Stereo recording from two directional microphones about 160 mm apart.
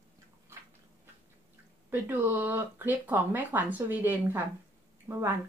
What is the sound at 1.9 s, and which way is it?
Speech, 10° right (ahead or behind).